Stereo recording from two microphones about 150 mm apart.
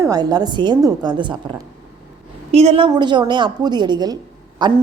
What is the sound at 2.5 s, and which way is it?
A woman's voice, 45° right (ahead or behind).